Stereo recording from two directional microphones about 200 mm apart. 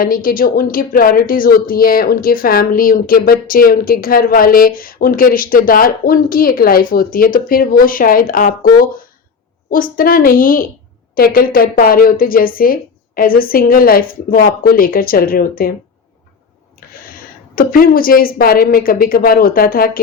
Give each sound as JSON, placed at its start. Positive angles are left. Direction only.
{"t": 0.0, "sound": "a woman's voice", "side_deg": 45}
{"t": 17.5, "sound": "a woman's voice", "side_deg": 45}